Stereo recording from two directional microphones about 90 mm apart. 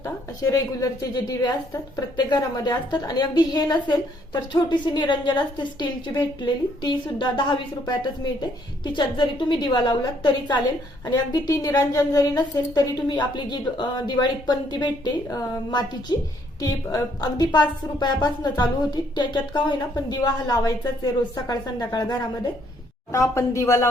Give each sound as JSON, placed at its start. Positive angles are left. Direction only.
{"t": 0.5, "sound": "a woman's voice", "side_deg": 45}
{"t": 23.1, "sound": "speech", "side_deg": 35}